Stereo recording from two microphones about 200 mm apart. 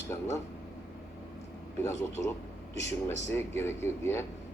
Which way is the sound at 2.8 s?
35° right (ahead or behind).